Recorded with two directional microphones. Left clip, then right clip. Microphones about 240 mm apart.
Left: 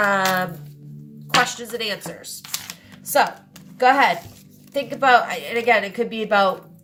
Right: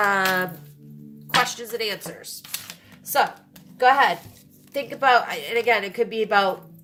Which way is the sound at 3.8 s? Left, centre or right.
Right.